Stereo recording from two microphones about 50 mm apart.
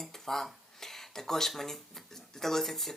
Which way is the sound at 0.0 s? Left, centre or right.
Centre.